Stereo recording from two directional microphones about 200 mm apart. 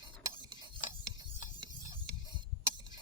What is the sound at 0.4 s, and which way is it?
Rub, 25° right (ahead or behind).